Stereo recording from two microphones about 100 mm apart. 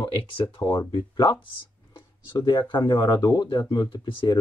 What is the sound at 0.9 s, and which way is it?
Speech, 55° left (ahead or behind).